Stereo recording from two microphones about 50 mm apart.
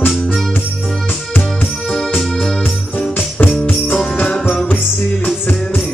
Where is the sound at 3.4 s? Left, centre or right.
Left.